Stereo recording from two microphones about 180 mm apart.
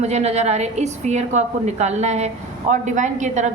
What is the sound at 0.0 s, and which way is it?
A woman's voice, 35° right (ahead or behind).